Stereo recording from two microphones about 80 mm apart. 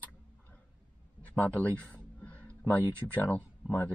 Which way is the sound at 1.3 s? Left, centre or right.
Centre.